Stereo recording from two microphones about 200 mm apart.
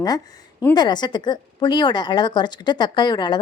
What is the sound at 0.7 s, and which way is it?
Speech, 20° left (ahead or behind).